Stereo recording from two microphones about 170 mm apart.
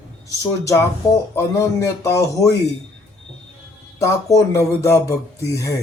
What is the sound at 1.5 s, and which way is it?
Speech, 20° left (ahead or behind).